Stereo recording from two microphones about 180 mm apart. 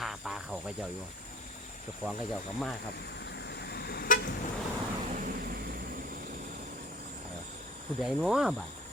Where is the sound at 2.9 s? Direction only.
65° left (ahead or behind).